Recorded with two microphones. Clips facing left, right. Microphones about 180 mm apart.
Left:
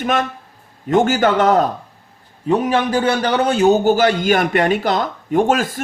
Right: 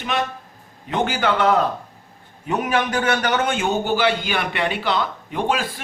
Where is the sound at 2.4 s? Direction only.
30° left (ahead or behind).